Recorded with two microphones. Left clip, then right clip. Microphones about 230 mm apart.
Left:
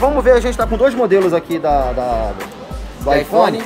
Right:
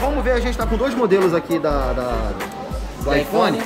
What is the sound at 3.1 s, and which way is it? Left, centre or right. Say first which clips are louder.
Speech: left 5 dB; centre.